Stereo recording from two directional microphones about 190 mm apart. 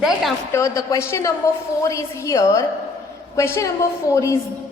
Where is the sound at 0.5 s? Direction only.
15° left (ahead or behind).